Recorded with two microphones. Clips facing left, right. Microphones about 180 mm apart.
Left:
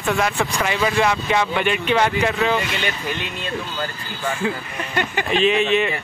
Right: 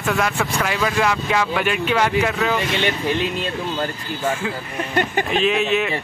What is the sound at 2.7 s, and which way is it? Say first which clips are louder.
Speech: right 5 dB; 30° right (ahead or behind).